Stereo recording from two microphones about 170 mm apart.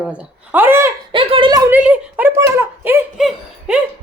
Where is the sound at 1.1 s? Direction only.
30° right (ahead or behind).